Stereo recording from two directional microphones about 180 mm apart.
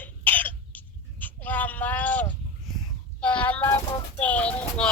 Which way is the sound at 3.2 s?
5° left (ahead or behind).